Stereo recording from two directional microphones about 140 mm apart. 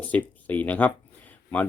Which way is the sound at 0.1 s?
10° left (ahead or behind).